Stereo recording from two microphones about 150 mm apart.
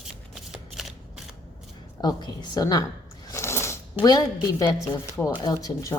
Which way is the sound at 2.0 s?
25° left (ahead or behind).